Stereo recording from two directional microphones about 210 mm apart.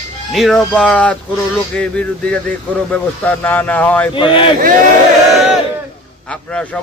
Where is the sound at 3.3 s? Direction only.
5° left (ahead or behind).